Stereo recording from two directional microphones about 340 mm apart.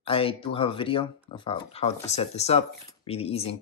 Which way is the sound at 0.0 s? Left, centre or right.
Centre.